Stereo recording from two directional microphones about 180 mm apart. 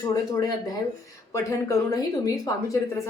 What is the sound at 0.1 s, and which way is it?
A woman's voice, 20° left (ahead or behind).